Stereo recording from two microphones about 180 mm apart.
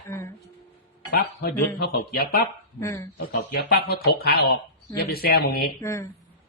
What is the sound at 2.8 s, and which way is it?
Speech, 15° left (ahead or behind).